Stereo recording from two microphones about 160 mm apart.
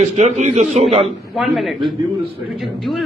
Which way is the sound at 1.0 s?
Centre (ahead or behind).